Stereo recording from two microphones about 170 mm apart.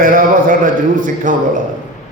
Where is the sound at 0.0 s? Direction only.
55° right (ahead or behind).